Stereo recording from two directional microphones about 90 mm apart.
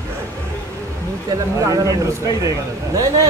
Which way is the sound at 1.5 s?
40° right (ahead or behind).